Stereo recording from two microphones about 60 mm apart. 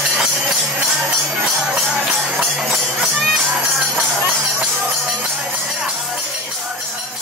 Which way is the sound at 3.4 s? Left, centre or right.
Right.